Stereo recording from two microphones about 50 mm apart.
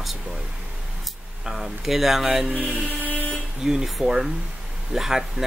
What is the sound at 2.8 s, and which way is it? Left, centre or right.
Vehicle, left.